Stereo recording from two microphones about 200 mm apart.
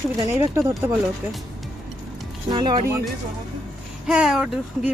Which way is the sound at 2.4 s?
20° right (ahead or behind).